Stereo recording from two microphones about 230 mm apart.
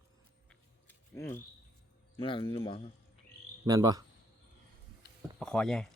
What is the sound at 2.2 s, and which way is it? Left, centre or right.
Speech, left.